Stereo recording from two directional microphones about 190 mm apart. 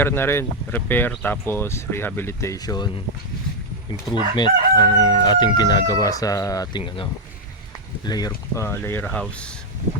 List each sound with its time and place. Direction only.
0.0 s speech: 10° left (ahead or behind)
3.9 s speech: 25° left (ahead or behind); by 9.6 s 5° left (ahead or behind)